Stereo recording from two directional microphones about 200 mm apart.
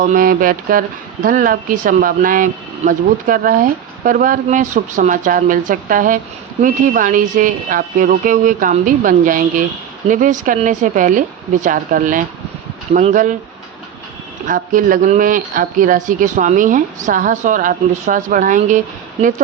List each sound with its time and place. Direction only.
0.0 s speech: 40° right (ahead or behind)
14.4 s speech: 40° right (ahead or behind)